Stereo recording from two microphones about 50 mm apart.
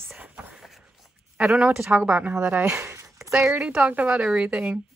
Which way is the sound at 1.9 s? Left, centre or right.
Right.